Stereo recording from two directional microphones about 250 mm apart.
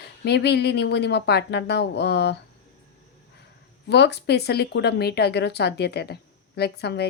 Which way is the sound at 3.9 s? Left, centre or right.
Left.